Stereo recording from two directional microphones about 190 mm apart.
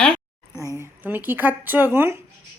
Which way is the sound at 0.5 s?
15° left (ahead or behind).